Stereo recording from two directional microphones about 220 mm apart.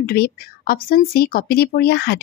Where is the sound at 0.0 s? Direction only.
45° left (ahead or behind).